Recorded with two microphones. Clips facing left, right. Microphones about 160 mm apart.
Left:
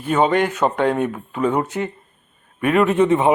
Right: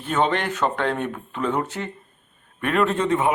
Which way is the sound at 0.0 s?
10° left (ahead or behind).